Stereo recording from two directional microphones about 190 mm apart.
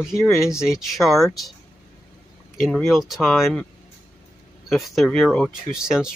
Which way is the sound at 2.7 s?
Centre (ahead or behind).